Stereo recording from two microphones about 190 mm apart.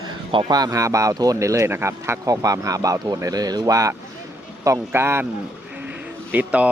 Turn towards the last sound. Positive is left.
turn(degrees=-10)  # may be behind; listen again after turning